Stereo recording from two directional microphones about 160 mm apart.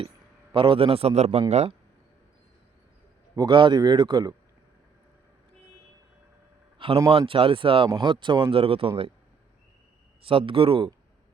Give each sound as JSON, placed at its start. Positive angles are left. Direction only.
{"t": 0.5, "sound": "a man's voice", "side_deg": -30}
{"t": 3.3, "sound": "speech", "side_deg": -25}
{"t": 6.7, "sound": "a sound", "side_deg": -35}
{"t": 7.1, "sound": "a man's voice", "side_deg": -35}
{"t": 10.2, "sound": "a man's voice", "side_deg": -35}